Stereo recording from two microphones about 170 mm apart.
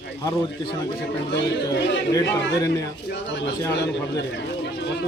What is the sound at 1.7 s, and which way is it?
Speech, 90° left.